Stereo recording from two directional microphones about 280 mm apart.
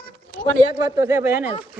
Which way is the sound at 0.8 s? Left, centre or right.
Centre.